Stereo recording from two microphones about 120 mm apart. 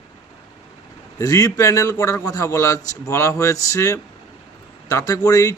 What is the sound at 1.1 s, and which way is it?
A man's voice, 30° left (ahead or behind).